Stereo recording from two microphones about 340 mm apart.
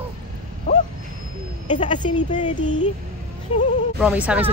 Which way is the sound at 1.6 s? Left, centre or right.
Centre.